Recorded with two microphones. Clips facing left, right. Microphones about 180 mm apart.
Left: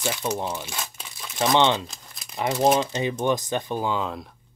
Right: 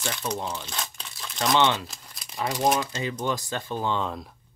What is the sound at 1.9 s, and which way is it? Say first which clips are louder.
Crumpling: left 1 dB; centre (ahead or behind).